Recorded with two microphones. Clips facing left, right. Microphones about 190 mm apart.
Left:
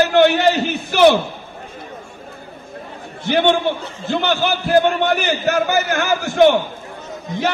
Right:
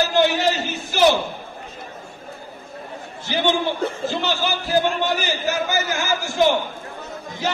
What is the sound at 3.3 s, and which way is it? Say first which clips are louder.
A man's voice: left 5 dB; 60° left (ahead or behind).